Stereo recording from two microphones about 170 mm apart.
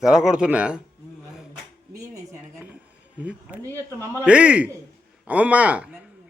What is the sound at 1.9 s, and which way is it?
Speech, 20° right (ahead or behind).